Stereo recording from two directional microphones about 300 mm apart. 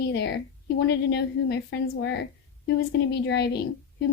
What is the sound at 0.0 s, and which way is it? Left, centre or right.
A woman's voice, left.